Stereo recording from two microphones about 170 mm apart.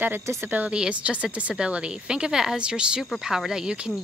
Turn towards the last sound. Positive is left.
turn(degrees=-5)  # may be behind; listen again after turning